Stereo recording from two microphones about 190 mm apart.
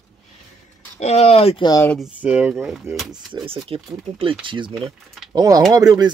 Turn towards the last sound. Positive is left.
turn(degrees=-20)  # may be behind; listen again after turning